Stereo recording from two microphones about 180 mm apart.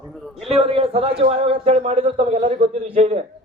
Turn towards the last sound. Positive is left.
turn(degrees=-35)  # may be behind; listen again after turning